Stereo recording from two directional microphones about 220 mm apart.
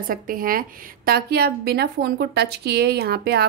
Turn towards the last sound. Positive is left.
turn(degrees=-45)  # may be behind; listen again after turning